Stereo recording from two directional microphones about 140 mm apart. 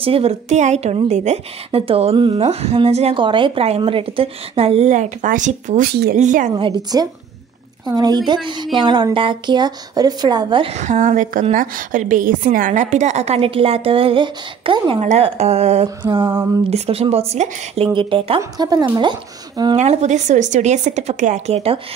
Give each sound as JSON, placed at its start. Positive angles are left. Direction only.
{"t": 0.0, "sound": "a woman's voice", "side_deg": -45}
{"t": 3.2, "sound": "a woman's voice", "side_deg": -35}
{"t": 6.5, "sound": "a woman's voice", "side_deg": -30}
{"t": 10.7, "sound": "speech", "side_deg": -60}
{"t": 11.5, "sound": "a woman's voice", "side_deg": -75}
{"t": 15.0, "sound": "a woman's voice", "side_deg": -50}
{"t": 16.0, "sound": "a woman's voice", "side_deg": -35}
{"t": 16.7, "sound": "a woman's voice", "side_deg": -45}
{"t": 18.4, "sound": "a woman's voice", "side_deg": -30}
{"t": 19.8, "sound": "speech", "side_deg": -55}